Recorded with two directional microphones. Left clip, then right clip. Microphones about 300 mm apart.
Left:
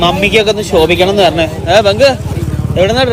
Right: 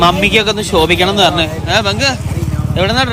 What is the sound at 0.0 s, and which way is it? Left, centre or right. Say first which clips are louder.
Speech: left 1 dB; centre.